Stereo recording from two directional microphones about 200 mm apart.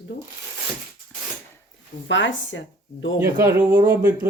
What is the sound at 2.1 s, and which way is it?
Speech, 70° left (ahead or behind).